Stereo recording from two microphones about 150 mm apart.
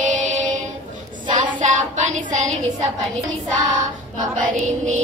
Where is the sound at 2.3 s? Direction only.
55° right (ahead or behind).